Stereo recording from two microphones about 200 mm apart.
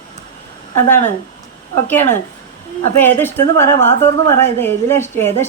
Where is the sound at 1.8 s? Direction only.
10° left (ahead or behind).